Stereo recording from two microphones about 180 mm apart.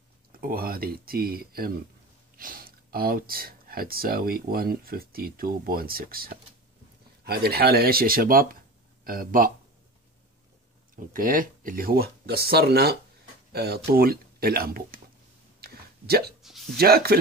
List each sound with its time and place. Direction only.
0.3 s speech: 55° right (ahead or behind)
11.0 s speech: 50° right (ahead or behind)
15.6 s a sound: 60° right (ahead or behind)
16.7 s speech: 60° right (ahead or behind)